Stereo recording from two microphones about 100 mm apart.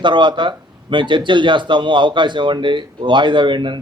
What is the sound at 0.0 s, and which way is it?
Speech, 50° right (ahead or behind).